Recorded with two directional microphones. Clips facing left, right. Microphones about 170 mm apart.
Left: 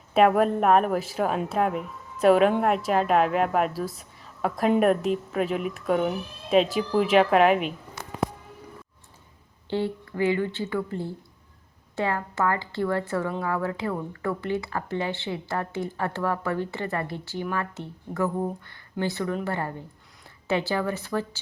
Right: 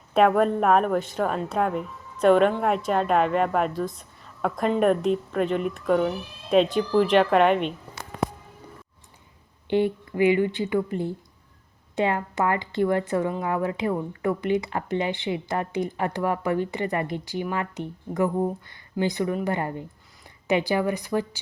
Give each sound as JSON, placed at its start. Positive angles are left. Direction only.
{"t": 0.1, "sound": "a woman's voice", "side_deg": 5}
{"t": 9.6, "sound": "speech", "side_deg": -20}